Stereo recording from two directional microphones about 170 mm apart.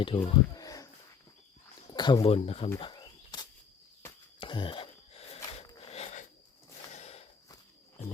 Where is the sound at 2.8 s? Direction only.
25° left (ahead or behind).